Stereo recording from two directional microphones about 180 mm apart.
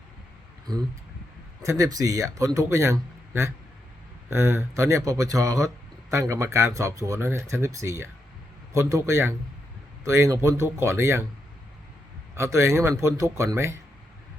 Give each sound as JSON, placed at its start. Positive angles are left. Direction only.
{"t": 1.6, "sound": "speech", "side_deg": -20}
{"t": 12.4, "sound": "speech", "side_deg": -15}